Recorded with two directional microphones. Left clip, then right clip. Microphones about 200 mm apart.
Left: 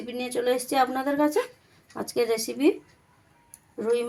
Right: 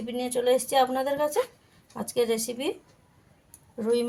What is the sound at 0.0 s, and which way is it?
A woman's voice, 20° left (ahead or behind).